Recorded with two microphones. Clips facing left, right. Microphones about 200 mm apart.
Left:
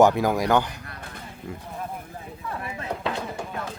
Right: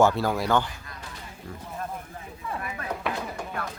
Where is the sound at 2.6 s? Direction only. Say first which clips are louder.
Left 2 dB; 25° left (ahead or behind).